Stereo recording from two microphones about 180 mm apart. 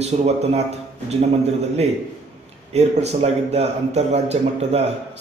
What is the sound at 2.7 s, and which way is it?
A man's voice, 35° right (ahead or behind).